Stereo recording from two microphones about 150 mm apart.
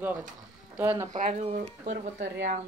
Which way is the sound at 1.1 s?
55° right (ahead or behind).